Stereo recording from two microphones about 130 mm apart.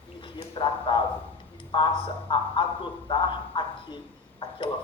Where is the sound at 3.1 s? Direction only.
40° left (ahead or behind).